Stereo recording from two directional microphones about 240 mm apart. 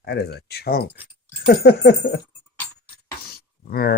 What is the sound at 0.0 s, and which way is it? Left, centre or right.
Speech, left.